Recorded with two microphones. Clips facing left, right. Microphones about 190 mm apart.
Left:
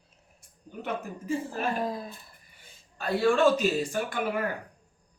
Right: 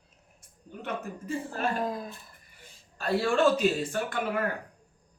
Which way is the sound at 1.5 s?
Centre (ahead or behind).